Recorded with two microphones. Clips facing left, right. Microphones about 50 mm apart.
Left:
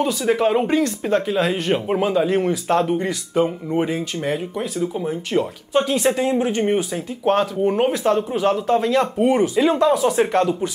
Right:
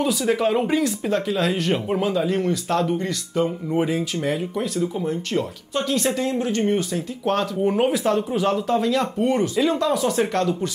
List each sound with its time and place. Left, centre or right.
0.2 s speech: centre
3.7 s speech: centre
7.6 s speech: centre